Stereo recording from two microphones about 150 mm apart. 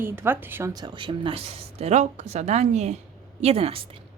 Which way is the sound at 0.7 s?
30° right (ahead or behind).